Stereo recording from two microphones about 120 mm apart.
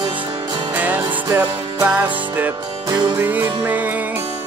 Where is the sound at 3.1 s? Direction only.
15° right (ahead or behind).